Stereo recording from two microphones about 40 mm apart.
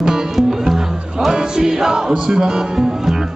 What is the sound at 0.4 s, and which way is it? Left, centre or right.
Music, centre.